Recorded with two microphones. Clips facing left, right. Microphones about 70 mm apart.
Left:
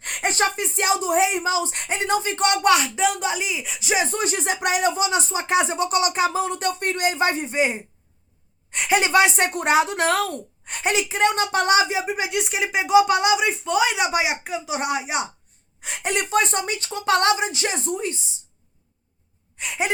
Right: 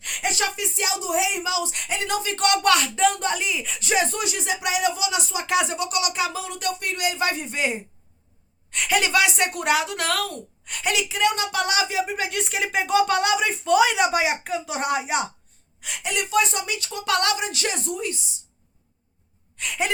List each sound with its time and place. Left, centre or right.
0.0 s a woman's voice: left; by 4.2 s centre
4.2 s a woman's voice: left; by 15.3 s centre
15.8 s a woman's voice: left
19.5 s a woman's voice: left